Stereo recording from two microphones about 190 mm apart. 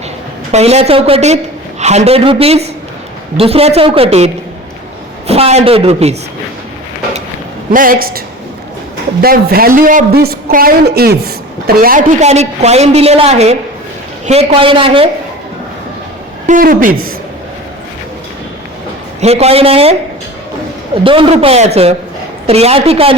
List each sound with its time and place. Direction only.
0.5 s a woman's voice: 35° right (ahead or behind)
5.3 s a woman's voice: 35° right (ahead or behind)
7.7 s a woman's voice: 45° right (ahead or behind)
9.2 s a woman's voice: 50° right (ahead or behind); by 15.1 s 30° right (ahead or behind)
16.5 s a woman's voice: 45° right (ahead or behind)
19.2 s a woman's voice: 35° right (ahead or behind)